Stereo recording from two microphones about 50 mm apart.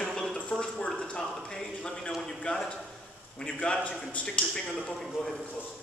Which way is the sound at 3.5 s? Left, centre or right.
Left.